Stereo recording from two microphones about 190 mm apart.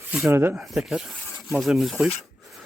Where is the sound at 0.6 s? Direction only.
Centre (ahead or behind).